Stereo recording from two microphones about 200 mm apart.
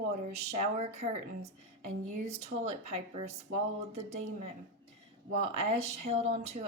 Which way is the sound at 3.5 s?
70° right (ahead or behind).